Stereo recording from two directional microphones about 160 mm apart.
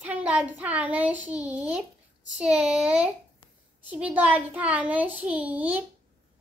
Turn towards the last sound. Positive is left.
turn(degrees=-10)  # may be behind; listen again after turning